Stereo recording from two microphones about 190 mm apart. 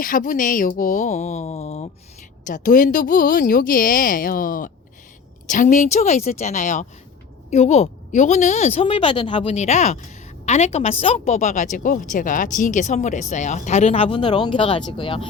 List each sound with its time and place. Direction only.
0.0 s a woman's voice: 45° left (ahead or behind)
2.5 s a woman's voice: 45° left (ahead or behind); by 15.3 s 25° left (ahead or behind)